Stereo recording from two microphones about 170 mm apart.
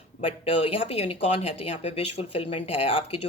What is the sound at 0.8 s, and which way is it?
Speech, 35° left (ahead or behind).